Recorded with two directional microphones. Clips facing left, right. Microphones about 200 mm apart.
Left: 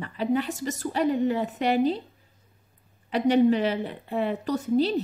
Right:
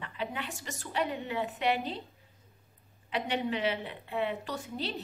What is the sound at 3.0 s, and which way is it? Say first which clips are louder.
A woman's voice: left 12 dB; 40° left (ahead or behind).